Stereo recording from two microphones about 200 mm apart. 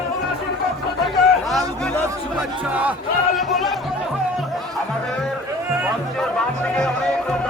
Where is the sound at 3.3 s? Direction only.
Centre (ahead or behind).